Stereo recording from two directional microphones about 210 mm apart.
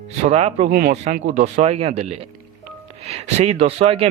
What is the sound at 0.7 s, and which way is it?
Speech, 45° right (ahead or behind).